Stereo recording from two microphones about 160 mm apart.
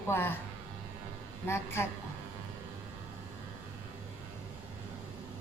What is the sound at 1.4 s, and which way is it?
Speech, 15° left (ahead or behind).